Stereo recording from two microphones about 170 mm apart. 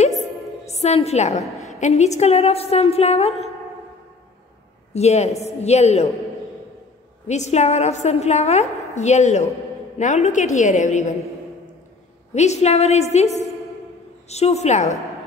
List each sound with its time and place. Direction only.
0.0 s music: 45° left (ahead or behind)
1.6 s a woman's voice: 40° left (ahead or behind)
4.9 s a woman's voice: 40° left (ahead or behind)
7.2 s a woman's voice: 40° left (ahead or behind)
12.4 s a woman's voice: 40° left (ahead or behind)